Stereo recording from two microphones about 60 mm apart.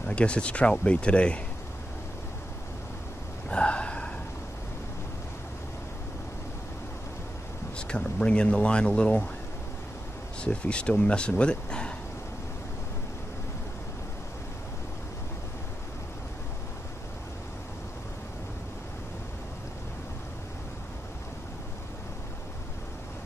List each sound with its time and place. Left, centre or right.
0.0 s speech: centre
3.4 s gasp: centre
7.7 s speech: centre
10.4 s speech: centre